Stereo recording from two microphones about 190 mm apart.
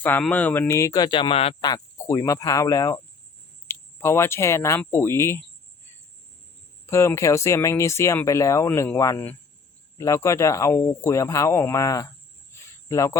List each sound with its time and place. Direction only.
0.0 s speech: 10° left (ahead or behind); by 1.7 s 30° left (ahead or behind)
1.7 s cricket: 20° left (ahead or behind)
3.7 s speech: 15° left (ahead or behind)
6.8 s speech: 15° left (ahead or behind)